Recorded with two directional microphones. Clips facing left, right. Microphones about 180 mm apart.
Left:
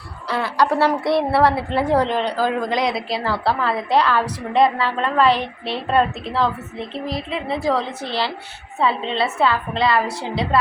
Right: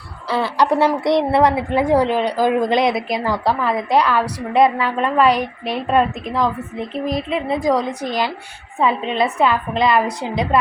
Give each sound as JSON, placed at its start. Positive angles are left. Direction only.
{"t": 0.3, "sound": "a woman's voice", "side_deg": -30}
{"t": 2.6, "sound": "a woman's voice", "side_deg": -25}